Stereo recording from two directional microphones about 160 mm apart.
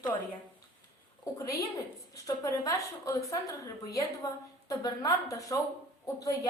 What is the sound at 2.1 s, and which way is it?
A woman's voice, 25° left (ahead or behind).